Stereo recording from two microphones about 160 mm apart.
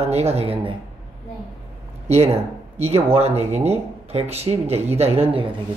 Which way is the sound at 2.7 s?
40° right (ahead or behind).